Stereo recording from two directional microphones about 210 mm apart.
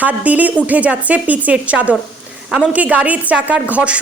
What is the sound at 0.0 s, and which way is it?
A woman's voice, 5° right (ahead or behind).